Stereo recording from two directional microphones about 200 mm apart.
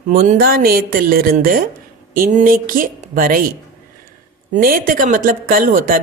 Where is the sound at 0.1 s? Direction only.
45° right (ahead or behind).